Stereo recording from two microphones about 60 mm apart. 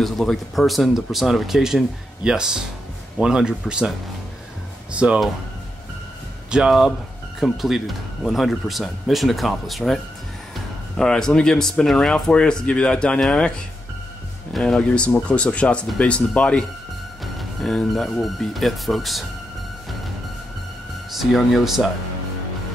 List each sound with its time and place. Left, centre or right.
0.0 s a man's voice: centre
4.9 s speech: centre
6.5 s a man's voice: centre
7.3 s speech: centre
14.6 s speech: centre
17.2 s speech: centre
21.2 s speech: centre